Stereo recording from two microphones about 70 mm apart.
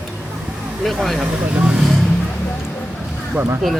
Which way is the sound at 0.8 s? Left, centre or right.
Centre.